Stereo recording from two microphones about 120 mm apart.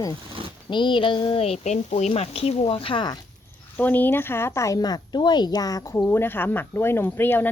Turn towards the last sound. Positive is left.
turn(degrees=15)  # may be behind; listen again after turning